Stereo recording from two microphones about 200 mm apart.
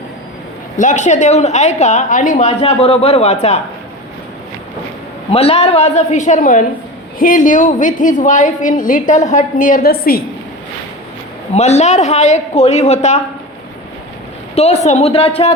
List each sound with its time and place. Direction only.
0.8 s a woman's voice: 35° left (ahead or behind)
5.3 s a woman's voice: 30° left (ahead or behind); by 10.2 s 50° left (ahead or behind)
11.5 s a woman's voice: 35° left (ahead or behind)
14.5 s speech: 30° left (ahead or behind)